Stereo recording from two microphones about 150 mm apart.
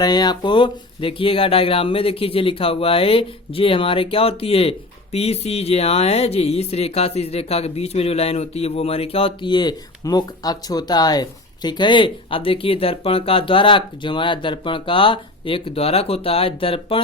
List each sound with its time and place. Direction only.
0.0 s speech: 25° left (ahead or behind)